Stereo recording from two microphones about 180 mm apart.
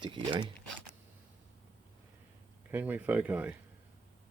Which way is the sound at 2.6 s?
10° right (ahead or behind).